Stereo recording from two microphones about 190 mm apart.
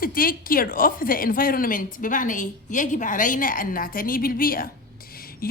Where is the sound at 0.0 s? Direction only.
50° left (ahead or behind).